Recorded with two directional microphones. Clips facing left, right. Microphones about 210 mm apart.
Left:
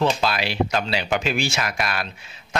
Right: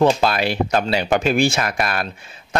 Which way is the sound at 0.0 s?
50° right (ahead or behind).